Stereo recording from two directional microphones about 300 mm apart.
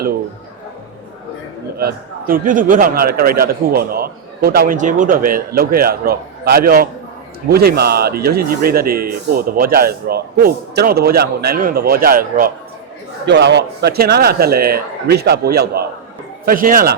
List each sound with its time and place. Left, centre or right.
1.8 s a man's voice: right